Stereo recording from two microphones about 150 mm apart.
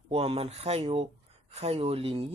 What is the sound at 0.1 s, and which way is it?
Speech, 40° right (ahead or behind).